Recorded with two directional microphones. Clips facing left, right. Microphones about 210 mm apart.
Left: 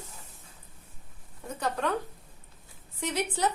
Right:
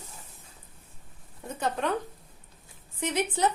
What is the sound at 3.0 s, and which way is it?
Speech, 20° right (ahead or behind).